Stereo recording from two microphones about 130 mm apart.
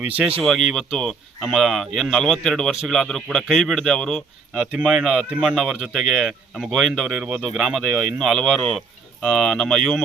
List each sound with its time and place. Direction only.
0.4 s speech: centre (ahead or behind)